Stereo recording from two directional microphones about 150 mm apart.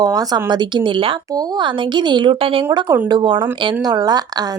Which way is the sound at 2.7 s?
25° right (ahead or behind).